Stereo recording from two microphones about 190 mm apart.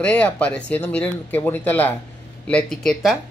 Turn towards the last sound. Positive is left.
turn(degrees=0)  # may be behind; listen again after turning